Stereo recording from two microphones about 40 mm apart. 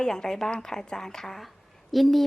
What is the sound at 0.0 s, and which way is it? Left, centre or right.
A woman's voice, centre.